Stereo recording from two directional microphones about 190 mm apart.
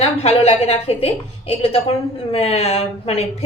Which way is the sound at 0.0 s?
30° left (ahead or behind).